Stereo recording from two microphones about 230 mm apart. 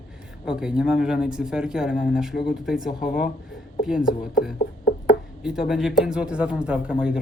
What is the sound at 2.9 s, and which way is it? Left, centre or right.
Speech, left.